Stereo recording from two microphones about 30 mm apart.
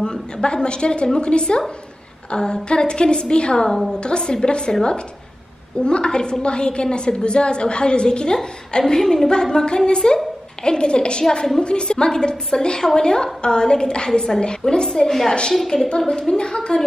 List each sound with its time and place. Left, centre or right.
0.0 s a woman's voice: left
5.8 s a woman's voice: left
8.8 s a woman's voice: centre; by 11.2 s left
11.2 s a woman's voice: centre
11.6 s a woman's voice: left
15.0 s a woman's voice: centre